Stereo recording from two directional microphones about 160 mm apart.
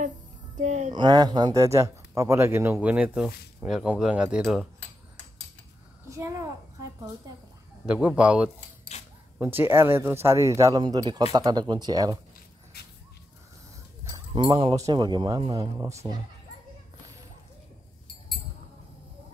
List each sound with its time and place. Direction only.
0.6 s speech: 45° right (ahead or behind)
0.9 s speech: 25° right (ahead or behind); by 4.6 s 5° right (ahead or behind)
6.0 s a sound: 20° right (ahead or behind)
7.8 s speech: 5° right (ahead or behind)
8.9 s a sound: 45° left (ahead or behind)
9.4 s speech: 15° right (ahead or behind)
14.0 s speech: 30° right (ahead or behind)